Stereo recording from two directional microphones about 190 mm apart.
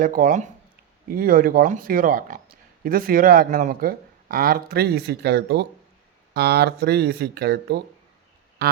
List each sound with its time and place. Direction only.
0.0 s speech: 45° right (ahead or behind)